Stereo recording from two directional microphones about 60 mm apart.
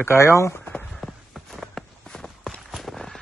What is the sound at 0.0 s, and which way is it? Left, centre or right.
Speech, left.